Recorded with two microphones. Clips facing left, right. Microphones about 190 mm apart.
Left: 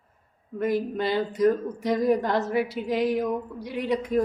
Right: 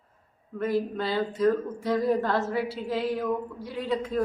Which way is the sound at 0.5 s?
15° left (ahead or behind).